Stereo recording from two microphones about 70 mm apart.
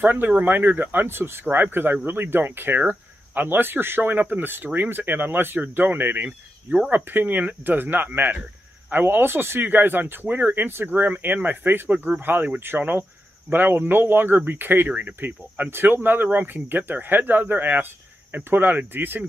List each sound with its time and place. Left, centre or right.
0.0 s speech: right